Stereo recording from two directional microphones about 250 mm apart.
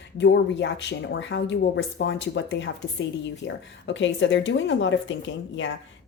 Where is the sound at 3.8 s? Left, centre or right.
Left.